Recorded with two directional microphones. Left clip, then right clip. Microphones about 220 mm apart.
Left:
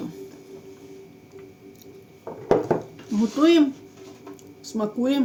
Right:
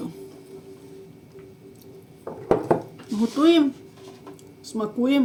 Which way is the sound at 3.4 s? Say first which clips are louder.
Even; 35° left (ahead or behind).